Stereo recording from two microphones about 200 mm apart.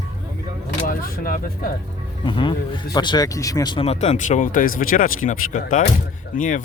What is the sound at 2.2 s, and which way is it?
Speech, 25° left (ahead or behind).